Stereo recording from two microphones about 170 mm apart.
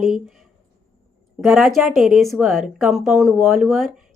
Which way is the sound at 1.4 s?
Centre (ahead or behind).